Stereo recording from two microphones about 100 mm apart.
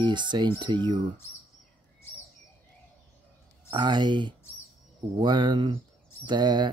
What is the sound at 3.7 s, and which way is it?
Speech, 50° right (ahead or behind).